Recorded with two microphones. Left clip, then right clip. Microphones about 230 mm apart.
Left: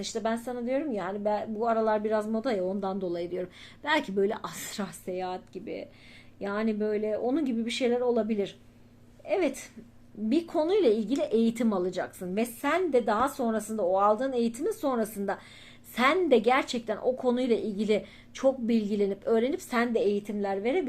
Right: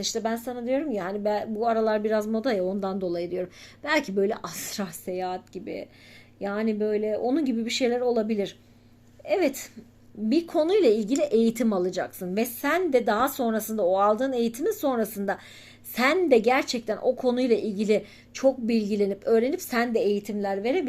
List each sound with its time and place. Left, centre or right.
0.0 s a woman's voice: right
10.2 s a woman's voice: right